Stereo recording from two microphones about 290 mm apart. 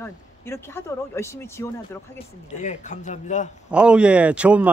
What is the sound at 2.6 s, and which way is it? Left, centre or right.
Speech, left.